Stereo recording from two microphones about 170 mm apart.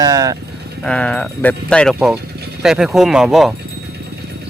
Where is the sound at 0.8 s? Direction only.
5° left (ahead or behind).